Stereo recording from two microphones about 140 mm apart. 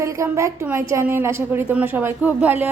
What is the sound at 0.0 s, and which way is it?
A woman's voice, 20° right (ahead or behind).